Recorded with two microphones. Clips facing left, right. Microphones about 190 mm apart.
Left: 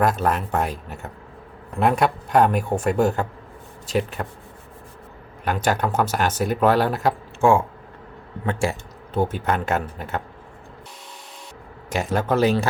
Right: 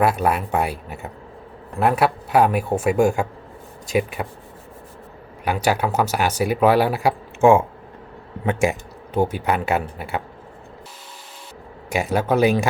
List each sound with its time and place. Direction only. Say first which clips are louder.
0.0 s speech: right 2 dB; 10° right (ahead or behind)
5.5 s speech: right 1 dB; 10° right (ahead or behind)
12.1 s speech: right 2 dB; 10° right (ahead or behind)